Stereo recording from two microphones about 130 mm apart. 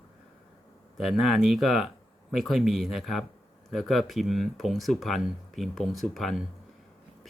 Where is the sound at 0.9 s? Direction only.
Centre (ahead or behind).